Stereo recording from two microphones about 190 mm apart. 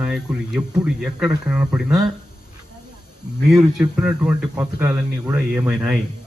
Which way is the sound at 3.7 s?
5° right (ahead or behind).